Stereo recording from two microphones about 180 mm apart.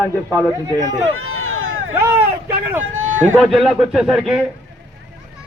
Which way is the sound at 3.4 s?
Centre (ahead or behind).